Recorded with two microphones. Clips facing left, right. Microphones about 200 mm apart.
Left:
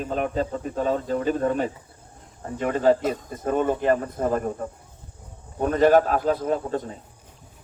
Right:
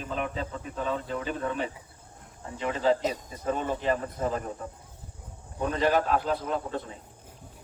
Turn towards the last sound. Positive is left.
turn(degrees=45)  # may be behind; listen again after turning